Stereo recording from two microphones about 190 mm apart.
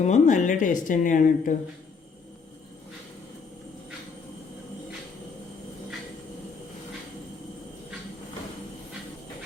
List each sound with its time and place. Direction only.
0.0 s speech: 40° left (ahead or behind)